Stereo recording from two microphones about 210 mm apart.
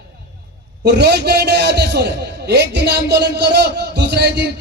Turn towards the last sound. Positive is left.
turn(degrees=-55)  # may be behind; listen again after turning